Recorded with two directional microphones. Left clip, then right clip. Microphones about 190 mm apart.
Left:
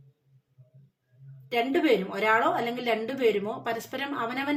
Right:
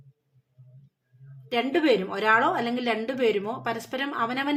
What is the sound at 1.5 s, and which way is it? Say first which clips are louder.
Speech: right 1 dB; 35° right (ahead or behind).